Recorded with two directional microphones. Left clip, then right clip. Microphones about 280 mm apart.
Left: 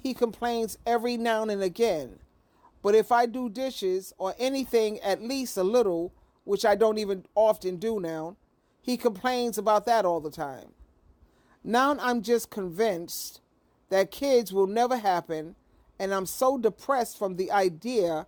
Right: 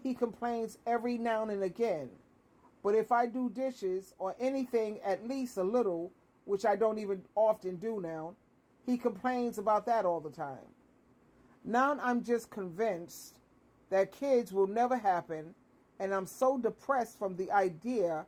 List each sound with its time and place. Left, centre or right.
0.0 s speech: left